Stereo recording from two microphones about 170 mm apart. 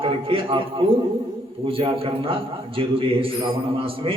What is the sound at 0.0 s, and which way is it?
A man's voice, 30° right (ahead or behind).